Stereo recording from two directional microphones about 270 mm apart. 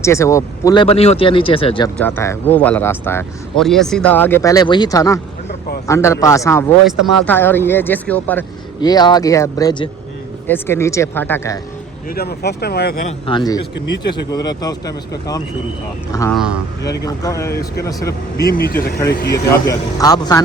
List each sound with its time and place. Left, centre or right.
0.0 s speech: centre
2.0 s speech: centre
5.5 s a sound: left
5.9 s speech: centre
6.9 s speech: right
7.3 s speech: centre
12.0 s speech: left
13.2 s speech: centre
16.3 s speech: centre
16.8 s speech: left
17.1 s speech: centre
18.5 s speech: left
19.3 s speech: centre